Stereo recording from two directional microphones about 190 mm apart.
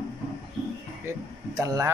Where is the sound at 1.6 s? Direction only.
15° right (ahead or behind).